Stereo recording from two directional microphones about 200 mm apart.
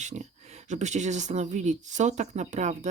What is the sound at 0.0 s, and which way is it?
Speech, 35° right (ahead or behind).